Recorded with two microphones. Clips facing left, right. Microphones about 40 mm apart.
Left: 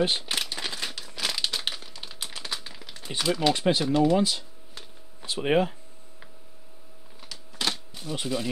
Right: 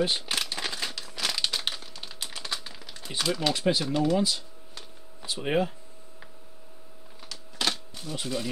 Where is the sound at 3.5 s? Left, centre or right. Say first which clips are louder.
Left 3 dB; left.